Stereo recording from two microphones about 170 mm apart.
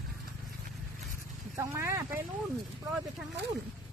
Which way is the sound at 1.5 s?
15° right (ahead or behind).